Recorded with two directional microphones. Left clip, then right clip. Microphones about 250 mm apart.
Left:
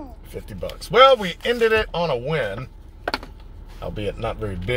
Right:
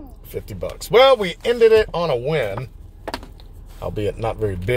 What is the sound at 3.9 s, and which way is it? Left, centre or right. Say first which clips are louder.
Speech: right 4 dB; right.